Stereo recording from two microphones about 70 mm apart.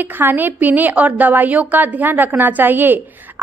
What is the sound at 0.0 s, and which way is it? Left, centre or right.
A woman's voice, right.